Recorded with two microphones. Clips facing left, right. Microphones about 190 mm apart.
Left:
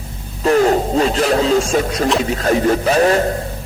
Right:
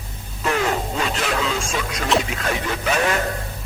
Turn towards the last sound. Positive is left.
turn(degrees=35)  # may be behind; listen again after turning